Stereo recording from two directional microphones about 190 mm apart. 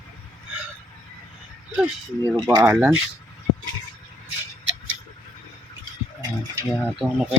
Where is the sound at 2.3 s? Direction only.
20° right (ahead or behind).